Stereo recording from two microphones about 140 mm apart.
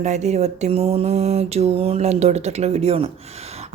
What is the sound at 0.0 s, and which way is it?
Mantra, 55° right (ahead or behind).